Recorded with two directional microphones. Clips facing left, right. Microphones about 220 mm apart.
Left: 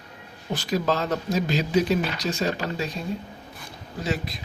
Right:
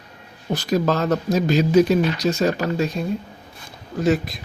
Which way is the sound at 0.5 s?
45° right (ahead or behind).